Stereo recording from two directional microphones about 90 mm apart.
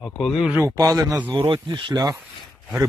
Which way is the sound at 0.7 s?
45° right (ahead or behind).